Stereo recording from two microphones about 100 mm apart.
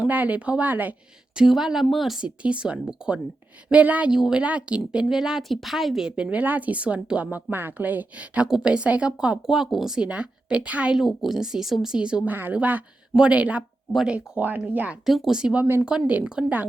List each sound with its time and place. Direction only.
0.0 s a woman's voice: 15° right (ahead or behind)
1.4 s a woman's voice: 5° right (ahead or behind)
15.0 s a woman's voice: 5° right (ahead or behind)